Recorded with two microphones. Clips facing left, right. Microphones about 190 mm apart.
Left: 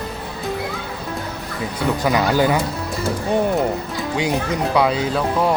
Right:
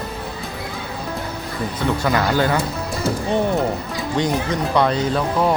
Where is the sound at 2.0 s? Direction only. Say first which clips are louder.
Left 2 dB; 15° left (ahead or behind).